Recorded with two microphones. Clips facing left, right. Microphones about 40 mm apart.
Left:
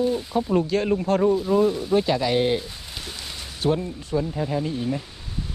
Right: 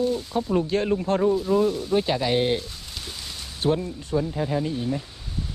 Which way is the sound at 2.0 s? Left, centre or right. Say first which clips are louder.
Left 1 dB; centre.